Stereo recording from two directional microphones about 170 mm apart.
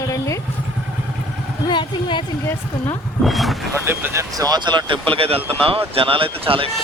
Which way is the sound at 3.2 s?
Centre (ahead or behind).